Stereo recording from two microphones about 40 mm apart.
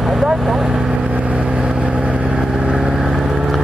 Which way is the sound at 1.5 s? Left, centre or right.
Right.